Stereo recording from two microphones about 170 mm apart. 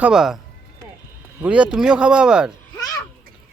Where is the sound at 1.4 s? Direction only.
5° right (ahead or behind).